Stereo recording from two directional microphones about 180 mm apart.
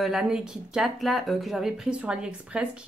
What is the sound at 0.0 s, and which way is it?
Speech, 5° right (ahead or behind).